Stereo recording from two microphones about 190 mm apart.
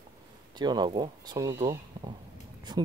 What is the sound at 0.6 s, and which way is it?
Speech, 20° right (ahead or behind).